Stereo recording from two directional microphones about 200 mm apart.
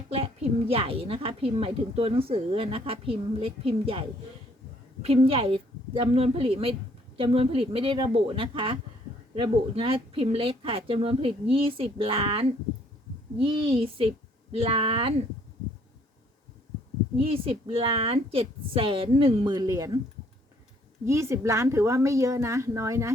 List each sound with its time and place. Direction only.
0.7 s speech: 30° right (ahead or behind)
5.0 s speech: 30° right (ahead or behind)
17.2 s speech: 30° right (ahead or behind)
21.0 s speech: 15° right (ahead or behind)